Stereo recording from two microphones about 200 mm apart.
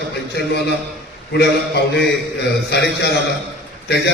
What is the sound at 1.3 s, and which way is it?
A man's voice, 55° left (ahead or behind).